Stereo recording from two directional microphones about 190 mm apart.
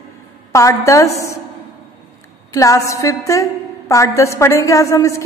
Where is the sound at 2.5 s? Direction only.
15° left (ahead or behind).